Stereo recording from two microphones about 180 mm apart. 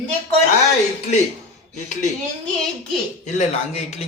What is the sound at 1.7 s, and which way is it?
Speech, 45° left (ahead or behind).